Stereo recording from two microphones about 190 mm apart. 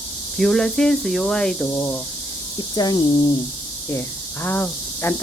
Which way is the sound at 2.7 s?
20° left (ahead or behind).